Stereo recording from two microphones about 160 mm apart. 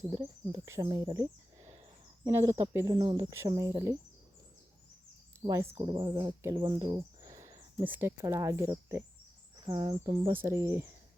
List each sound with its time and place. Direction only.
0.5 s speech: 25° right (ahead or behind)
5.4 s speech: 20° right (ahead or behind)
5.6 s speech: 35° right (ahead or behind)
7.2 s speech: 20° right (ahead or behind)
9.6 s speech: 30° right (ahead or behind)